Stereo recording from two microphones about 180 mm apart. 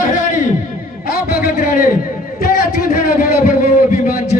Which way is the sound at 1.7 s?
50° left (ahead or behind).